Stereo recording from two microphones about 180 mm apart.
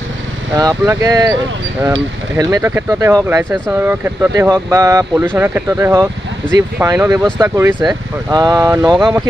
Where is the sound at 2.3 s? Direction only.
15° right (ahead or behind).